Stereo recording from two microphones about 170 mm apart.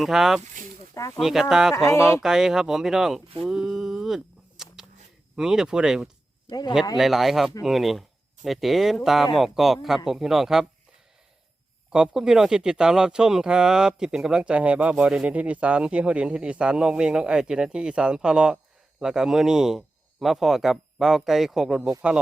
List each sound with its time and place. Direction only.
0.0 s speech: centre (ahead or behind)
0.9 s speech: 20° left (ahead or behind)
1.2 s speech: centre (ahead or behind)
1.7 s speech: 15° left (ahead or behind)
2.2 s speech: 5° right (ahead or behind)
3.4 s a sound: centre (ahead or behind)
5.4 s speech: 5° right (ahead or behind)
6.5 s a man's voice: 25° left (ahead or behind)
6.9 s speech: centre (ahead or behind)
11.9 s speech: 5° right (ahead or behind)